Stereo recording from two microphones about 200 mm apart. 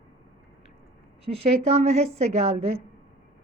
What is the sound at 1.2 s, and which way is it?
Speech, 30° right (ahead or behind).